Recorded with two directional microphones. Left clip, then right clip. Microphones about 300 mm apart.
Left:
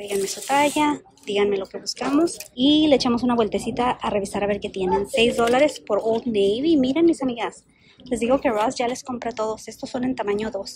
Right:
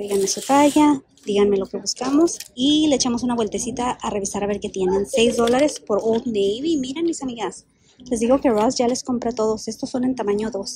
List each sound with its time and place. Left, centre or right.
0.0 s speech: centre